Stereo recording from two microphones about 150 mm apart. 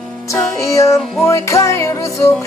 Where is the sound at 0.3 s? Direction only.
20° left (ahead or behind).